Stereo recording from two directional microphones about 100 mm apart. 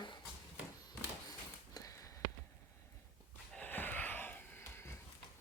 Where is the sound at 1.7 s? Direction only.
35° left (ahead or behind).